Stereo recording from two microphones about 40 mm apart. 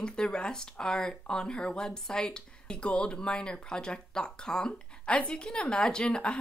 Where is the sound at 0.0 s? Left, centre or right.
Left.